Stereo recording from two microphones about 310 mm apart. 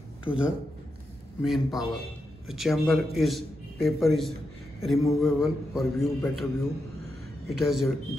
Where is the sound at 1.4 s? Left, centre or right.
Centre.